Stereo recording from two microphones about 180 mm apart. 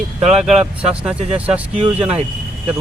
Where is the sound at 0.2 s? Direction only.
5° right (ahead or behind).